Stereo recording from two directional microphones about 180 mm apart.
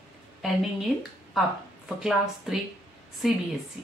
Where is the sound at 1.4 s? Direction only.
Centre (ahead or behind).